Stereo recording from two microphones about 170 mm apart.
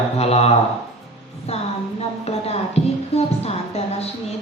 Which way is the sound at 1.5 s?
40° left (ahead or behind).